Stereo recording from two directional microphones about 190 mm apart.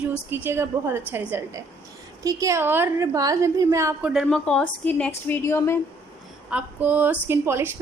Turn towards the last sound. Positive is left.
turn(degrees=-10)  # may be behind; listen again after turning